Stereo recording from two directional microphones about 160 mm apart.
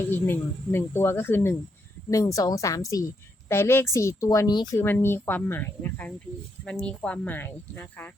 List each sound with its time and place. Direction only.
0.1 s speech: 15° left (ahead or behind)
4.8 s speech: 15° left (ahead or behind)